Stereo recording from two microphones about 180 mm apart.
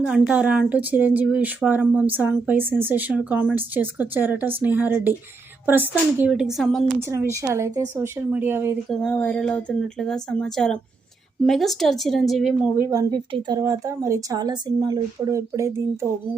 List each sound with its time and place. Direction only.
0.0 s speech: 5° right (ahead or behind)
7.4 s speech: 15° right (ahead or behind)
8.9 s speech: 5° left (ahead or behind)
12.7 s speech: 15° right (ahead or behind)